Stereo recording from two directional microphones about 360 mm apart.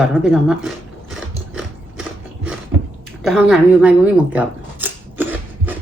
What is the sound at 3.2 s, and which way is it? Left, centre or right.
Speech, centre.